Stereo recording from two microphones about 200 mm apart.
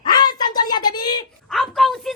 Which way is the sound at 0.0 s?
20° left (ahead or behind).